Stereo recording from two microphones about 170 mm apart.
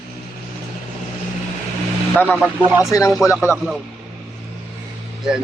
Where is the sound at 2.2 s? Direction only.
Centre (ahead or behind).